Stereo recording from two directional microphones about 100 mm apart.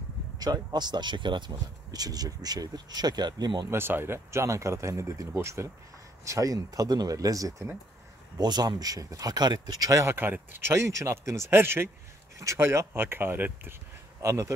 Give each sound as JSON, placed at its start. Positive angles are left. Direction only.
{"t": 0.4, "sound": "speech", "side_deg": -45}
{"t": 1.9, "sound": "speech", "side_deg": -40}
{"t": 3.7, "sound": "speech", "side_deg": -25}
{"t": 10.1, "sound": "speech", "side_deg": -20}